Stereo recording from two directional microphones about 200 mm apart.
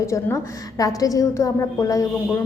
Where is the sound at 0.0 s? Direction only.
15° left (ahead or behind).